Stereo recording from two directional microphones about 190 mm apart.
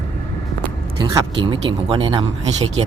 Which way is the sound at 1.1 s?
25° right (ahead or behind).